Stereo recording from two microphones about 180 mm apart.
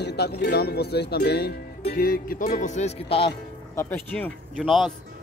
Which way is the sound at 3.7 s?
10° left (ahead or behind).